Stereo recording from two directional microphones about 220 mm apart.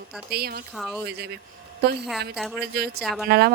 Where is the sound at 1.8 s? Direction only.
45° right (ahead or behind).